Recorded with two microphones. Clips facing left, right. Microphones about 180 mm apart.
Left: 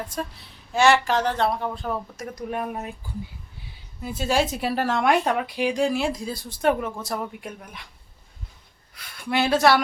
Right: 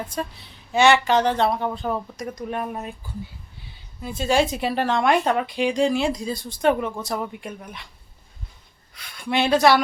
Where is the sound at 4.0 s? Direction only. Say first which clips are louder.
Right 2 dB; 5° left (ahead or behind).